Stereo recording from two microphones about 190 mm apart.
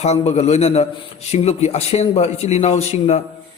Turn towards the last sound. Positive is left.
turn(degrees=35)  # may be behind; listen again after turning